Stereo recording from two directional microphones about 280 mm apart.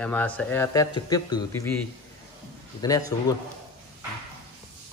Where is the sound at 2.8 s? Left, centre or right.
Centre.